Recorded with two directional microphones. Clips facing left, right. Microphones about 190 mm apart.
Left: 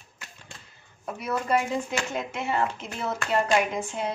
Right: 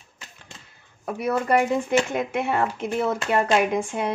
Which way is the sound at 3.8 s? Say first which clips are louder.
Right 4 dB; 60° right (ahead or behind).